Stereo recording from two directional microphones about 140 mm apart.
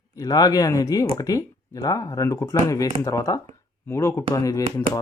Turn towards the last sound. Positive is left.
turn(degrees=25)  # may be behind; listen again after turning